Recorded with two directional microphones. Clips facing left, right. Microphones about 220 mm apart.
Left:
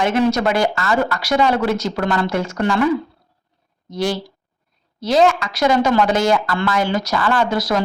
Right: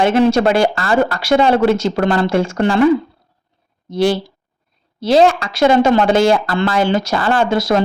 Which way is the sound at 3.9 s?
30° right (ahead or behind).